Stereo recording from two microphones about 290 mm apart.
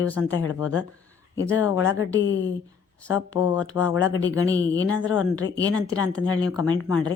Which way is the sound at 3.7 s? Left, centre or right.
Centre.